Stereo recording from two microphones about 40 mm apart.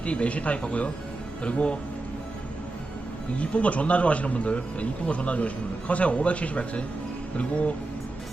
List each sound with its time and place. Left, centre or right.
0.0 s speech: left
3.3 s speech: left